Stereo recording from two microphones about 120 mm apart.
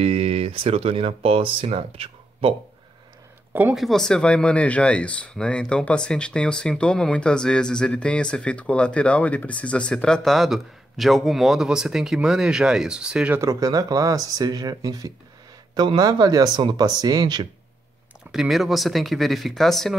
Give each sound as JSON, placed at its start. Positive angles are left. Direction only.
{"t": 0.0, "sound": "speech", "side_deg": -55}
{"t": 3.7, "sound": "speech", "side_deg": 0}
{"t": 13.4, "sound": "speech", "side_deg": -30}
{"t": 18.3, "sound": "speech", "side_deg": 0}